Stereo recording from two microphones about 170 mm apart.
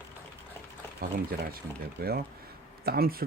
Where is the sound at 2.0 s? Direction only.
65° right (ahead or behind).